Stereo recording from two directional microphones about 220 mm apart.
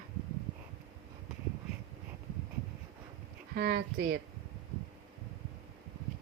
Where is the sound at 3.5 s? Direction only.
45° right (ahead or behind).